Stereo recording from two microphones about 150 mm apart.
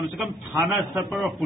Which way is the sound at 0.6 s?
Centre (ahead or behind).